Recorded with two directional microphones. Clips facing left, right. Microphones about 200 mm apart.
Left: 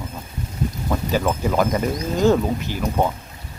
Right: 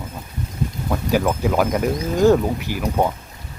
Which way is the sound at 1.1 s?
10° right (ahead or behind).